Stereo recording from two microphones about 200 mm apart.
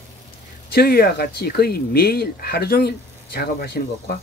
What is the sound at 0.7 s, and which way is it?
Speech, 50° left (ahead or behind).